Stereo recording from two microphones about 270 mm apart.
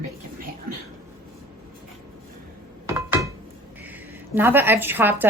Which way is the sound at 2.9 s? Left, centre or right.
Centre.